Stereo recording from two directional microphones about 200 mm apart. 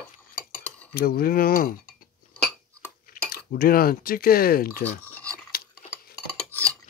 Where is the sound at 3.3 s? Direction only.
50° left (ahead or behind).